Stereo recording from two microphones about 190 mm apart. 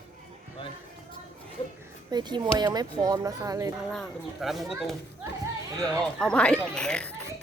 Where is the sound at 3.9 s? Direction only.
Centre (ahead or behind).